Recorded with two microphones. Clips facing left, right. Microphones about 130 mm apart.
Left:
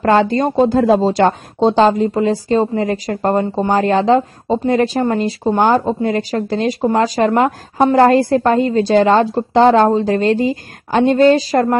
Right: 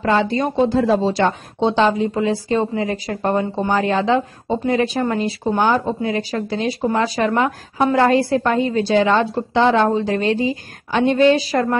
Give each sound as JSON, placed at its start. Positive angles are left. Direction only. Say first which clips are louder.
{"t": 0.0, "sound": "speech", "louder": "left 5 dB", "side_deg": 45}